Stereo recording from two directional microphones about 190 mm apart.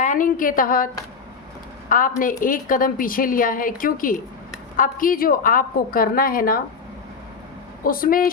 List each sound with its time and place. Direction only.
0.0 s a woman's voice: 45° left (ahead or behind)
1.9 s a woman's voice: 45° left (ahead or behind)
7.9 s a woman's voice: 50° left (ahead or behind)